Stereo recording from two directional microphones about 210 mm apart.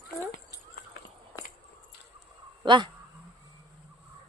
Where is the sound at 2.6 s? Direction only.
20° right (ahead or behind).